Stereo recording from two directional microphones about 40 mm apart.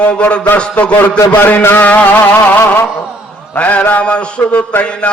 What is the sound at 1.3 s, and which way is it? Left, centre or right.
Music, left.